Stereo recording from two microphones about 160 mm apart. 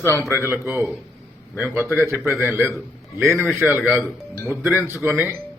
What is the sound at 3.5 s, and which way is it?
Speech, 5° right (ahead or behind).